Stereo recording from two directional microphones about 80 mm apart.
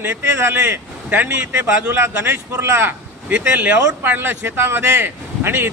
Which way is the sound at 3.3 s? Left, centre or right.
Centre.